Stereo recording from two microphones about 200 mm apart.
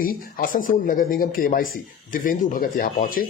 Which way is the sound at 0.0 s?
45° left (ahead or behind).